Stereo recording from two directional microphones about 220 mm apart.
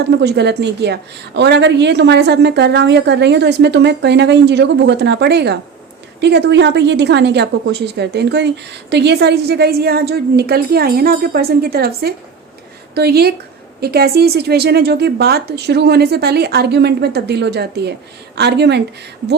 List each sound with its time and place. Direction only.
0.0 s a woman's voice: 50° right (ahead or behind)